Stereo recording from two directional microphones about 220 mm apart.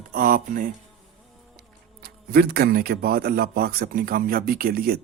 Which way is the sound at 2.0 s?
45° right (ahead or behind).